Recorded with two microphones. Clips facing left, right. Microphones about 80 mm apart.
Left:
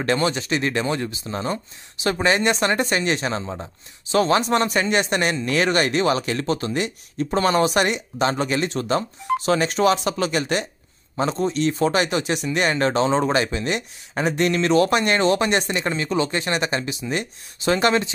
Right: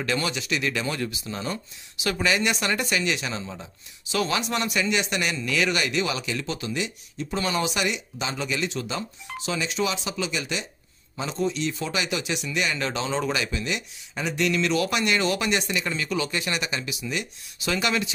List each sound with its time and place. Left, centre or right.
0.0 s speech: left